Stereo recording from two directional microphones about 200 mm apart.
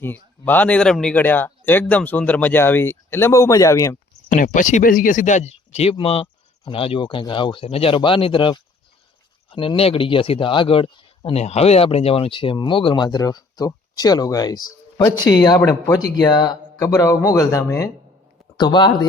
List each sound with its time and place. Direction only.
0.0 s speech: 10° left (ahead or behind)
4.3 s speech: 40° left (ahead or behind); by 19.0 s 20° left (ahead or behind)